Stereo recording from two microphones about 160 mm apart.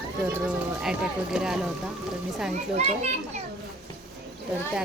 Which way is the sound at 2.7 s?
45° right (ahead or behind).